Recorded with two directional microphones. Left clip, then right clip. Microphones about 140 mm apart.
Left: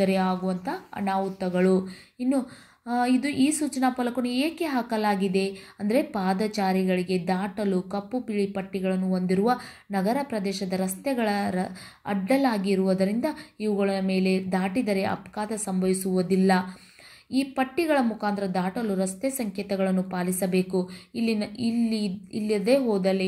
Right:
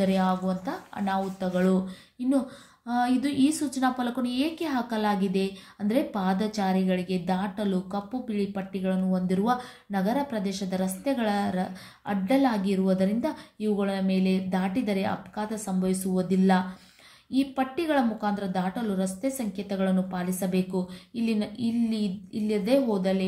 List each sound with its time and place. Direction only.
0.0 s a woman's voice: 25° left (ahead or behind)